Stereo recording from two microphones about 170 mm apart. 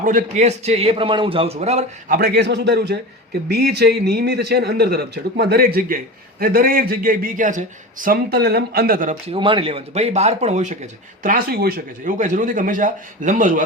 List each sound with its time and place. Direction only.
0.0 s a man's voice: 50° right (ahead or behind)
2.0 s a man's voice: 60° right (ahead or behind)
9.3 s a man's voice: 30° right (ahead or behind)
11.2 s a man's voice: 60° right (ahead or behind)
12.1 s speech: 45° right (ahead or behind)